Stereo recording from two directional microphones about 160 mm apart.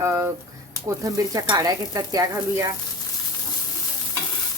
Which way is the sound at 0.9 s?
20° right (ahead or behind).